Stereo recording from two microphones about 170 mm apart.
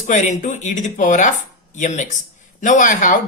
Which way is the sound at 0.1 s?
45° left (ahead or behind).